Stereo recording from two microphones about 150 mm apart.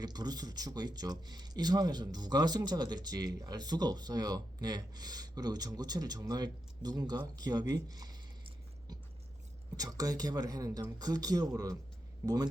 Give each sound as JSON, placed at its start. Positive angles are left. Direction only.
{"t": 0.0, "sound": "speech", "side_deg": -25}
{"t": 7.7, "sound": "a sound", "side_deg": -25}
{"t": 9.7, "sound": "speech", "side_deg": -25}